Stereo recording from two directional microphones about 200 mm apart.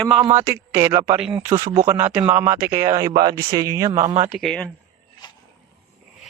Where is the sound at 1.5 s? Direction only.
25° right (ahead or behind).